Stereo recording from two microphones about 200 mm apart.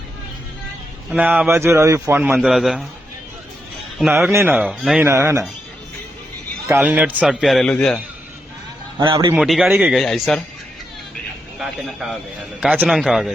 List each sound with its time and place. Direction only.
1.1 s a man's voice: 5° right (ahead or behind)
4.1 s a man's voice: 15° right (ahead or behind)
5.0 s a man's voice: 15° right (ahead or behind)
6.7 s a man's voice: 10° right (ahead or behind)
9.0 s a man's voice: 25° right (ahead or behind)
9.3 s a man's voice: 5° right (ahead or behind)
11.6 s a man's voice: centre (ahead or behind)